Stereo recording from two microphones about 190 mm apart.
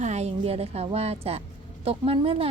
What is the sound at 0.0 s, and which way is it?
A woman's voice, 35° right (ahead or behind).